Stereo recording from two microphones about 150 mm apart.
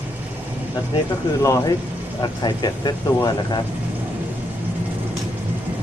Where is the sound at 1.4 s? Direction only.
20° left (ahead or behind).